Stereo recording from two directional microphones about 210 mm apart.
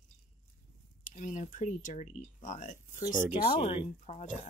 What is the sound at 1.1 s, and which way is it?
Speech, 35° left (ahead or behind).